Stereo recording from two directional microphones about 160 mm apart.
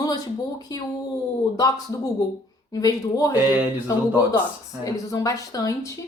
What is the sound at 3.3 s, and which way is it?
Speech, 10° right (ahead or behind).